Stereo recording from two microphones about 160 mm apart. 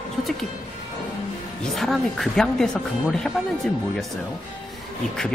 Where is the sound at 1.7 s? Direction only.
Centre (ahead or behind).